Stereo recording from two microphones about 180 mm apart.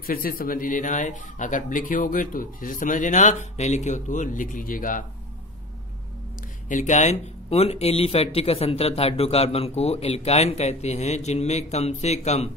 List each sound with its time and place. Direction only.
0.0 s speech: 55° left (ahead or behind)
6.7 s speech: 45° left (ahead or behind)